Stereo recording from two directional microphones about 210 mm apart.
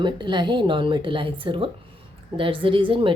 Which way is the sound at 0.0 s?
20° right (ahead or behind).